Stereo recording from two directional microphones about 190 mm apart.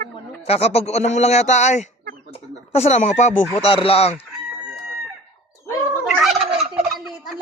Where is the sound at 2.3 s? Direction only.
35° left (ahead or behind).